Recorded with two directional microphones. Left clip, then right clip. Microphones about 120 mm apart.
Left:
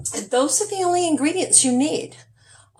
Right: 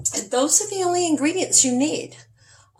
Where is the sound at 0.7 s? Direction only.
30° left (ahead or behind).